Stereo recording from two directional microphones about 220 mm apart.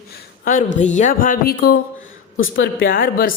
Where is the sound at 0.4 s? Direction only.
35° left (ahead or behind).